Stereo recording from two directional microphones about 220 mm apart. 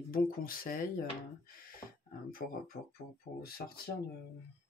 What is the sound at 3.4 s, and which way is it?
Speech, 45° left (ahead or behind).